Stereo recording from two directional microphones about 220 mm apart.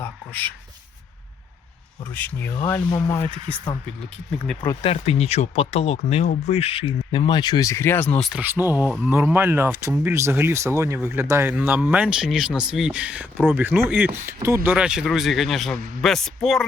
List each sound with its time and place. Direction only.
0.0 s speech: 10° left (ahead or behind)
2.1 s speech: 10° left (ahead or behind)
4.4 s speech: 10° left (ahead or behind)
4.8 s speech: 25° left (ahead or behind); by 8.3 s 5° left (ahead or behind)
8.3 s speech: 10° right (ahead or behind)